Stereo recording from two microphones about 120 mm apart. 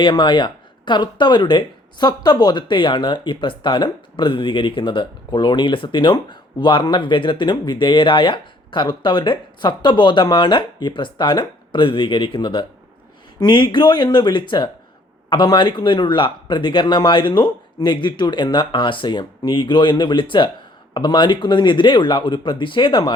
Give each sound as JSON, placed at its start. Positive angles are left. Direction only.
{"t": 0.0, "sound": "speech", "side_deg": 40}